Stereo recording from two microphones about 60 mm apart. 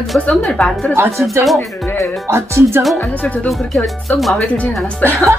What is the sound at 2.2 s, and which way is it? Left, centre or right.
Speech, right.